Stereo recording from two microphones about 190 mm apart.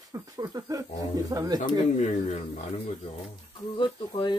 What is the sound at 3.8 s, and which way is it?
Speech, 25° left (ahead or behind).